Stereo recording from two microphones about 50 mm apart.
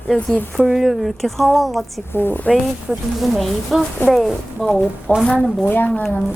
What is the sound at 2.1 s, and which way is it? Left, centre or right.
Speech, left.